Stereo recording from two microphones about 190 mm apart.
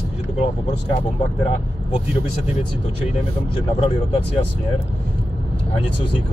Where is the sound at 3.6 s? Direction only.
30° left (ahead or behind).